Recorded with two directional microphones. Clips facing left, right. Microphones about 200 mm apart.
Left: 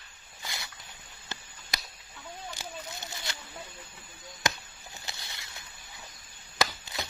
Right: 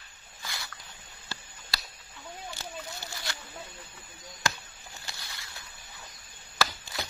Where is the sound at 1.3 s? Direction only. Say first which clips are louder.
Even; 20° left (ahead or behind).